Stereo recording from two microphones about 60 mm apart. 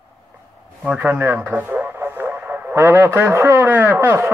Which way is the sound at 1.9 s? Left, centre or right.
Right.